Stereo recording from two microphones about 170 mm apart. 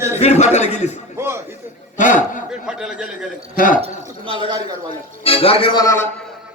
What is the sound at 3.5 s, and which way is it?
Speech, 50° left (ahead or behind).